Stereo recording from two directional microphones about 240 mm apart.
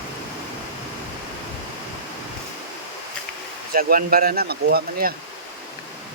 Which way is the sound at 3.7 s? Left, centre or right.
Right.